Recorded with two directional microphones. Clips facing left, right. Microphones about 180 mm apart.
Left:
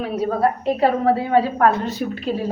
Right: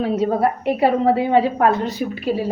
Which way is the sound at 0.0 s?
25° right (ahead or behind).